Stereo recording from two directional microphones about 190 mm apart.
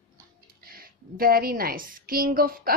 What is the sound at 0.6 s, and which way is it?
A woman's voice, 50° right (ahead or behind).